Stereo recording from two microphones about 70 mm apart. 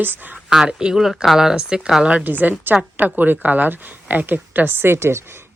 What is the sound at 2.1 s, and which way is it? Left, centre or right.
Speech, right.